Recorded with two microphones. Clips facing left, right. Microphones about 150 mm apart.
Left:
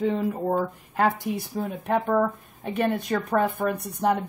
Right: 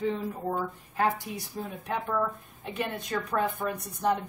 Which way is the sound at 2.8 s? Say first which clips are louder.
Left 7 dB; 60° left (ahead or behind).